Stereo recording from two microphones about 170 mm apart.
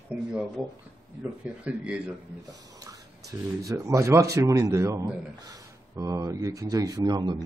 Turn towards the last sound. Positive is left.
turn(degrees=-25)  # may be behind; listen again after turning